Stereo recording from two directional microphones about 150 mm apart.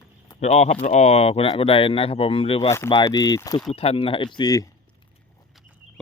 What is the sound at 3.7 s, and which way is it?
Speech, 40° left (ahead or behind).